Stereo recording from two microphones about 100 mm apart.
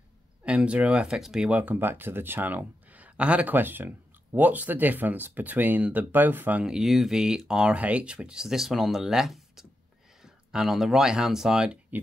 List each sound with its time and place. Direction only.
0.5 s speech: 10° right (ahead or behind)
1.6 s speech: 20° right (ahead or behind)
6.6 s speech: 5° right (ahead or behind)